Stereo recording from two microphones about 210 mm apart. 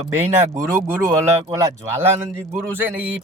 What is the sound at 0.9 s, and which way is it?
Speech, 15° right (ahead or behind).